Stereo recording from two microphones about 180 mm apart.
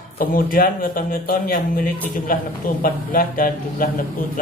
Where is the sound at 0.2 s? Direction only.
50° left (ahead or behind).